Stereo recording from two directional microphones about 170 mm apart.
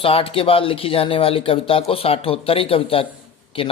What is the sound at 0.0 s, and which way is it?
Speech, 35° left (ahead or behind).